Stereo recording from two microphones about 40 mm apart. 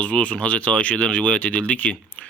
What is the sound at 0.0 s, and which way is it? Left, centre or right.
Speech, left.